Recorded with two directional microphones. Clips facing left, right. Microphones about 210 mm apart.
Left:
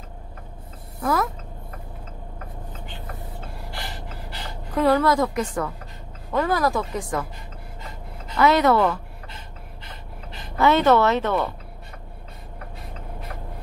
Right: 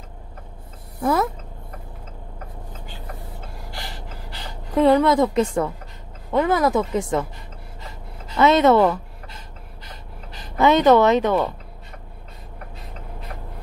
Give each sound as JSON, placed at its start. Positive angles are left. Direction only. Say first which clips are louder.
{"t": 1.0, "sound": "speech", "louder": "right 3 dB", "side_deg": -25}
{"t": 4.5, "sound": "a woman's voice", "louder": "right 4 dB", "side_deg": -20}
{"t": 8.4, "sound": "speech", "louder": "right 3 dB", "side_deg": -25}
{"t": 10.6, "sound": "speech", "louder": "right 3 dB", "side_deg": -15}